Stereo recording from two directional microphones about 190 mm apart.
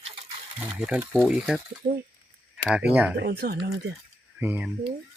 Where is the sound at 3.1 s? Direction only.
60° right (ahead or behind).